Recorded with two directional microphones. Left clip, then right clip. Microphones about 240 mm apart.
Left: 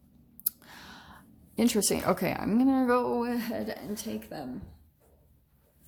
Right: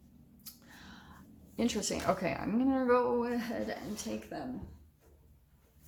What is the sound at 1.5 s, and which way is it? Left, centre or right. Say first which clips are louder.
Speech: left 7 dB; left.